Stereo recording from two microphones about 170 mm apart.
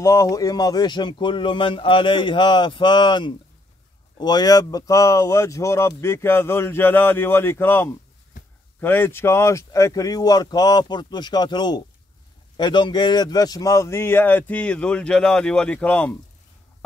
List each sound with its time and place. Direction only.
0.0 s speech: 20° left (ahead or behind)